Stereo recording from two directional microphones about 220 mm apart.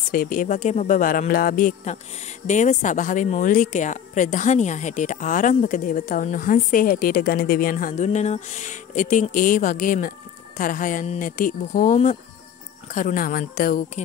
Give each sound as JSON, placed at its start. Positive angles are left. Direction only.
{"t": 0.1, "sound": "speech", "side_deg": 40}